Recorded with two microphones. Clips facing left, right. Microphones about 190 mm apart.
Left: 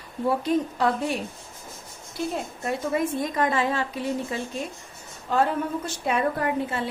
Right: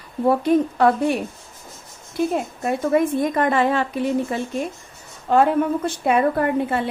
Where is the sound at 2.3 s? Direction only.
55° right (ahead or behind).